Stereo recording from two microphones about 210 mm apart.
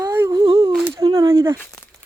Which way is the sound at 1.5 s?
10° left (ahead or behind).